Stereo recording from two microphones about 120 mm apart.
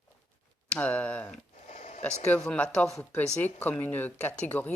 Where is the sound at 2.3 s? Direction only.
10° left (ahead or behind).